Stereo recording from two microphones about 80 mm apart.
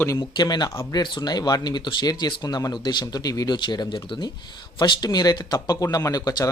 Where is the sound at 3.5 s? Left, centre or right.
Left.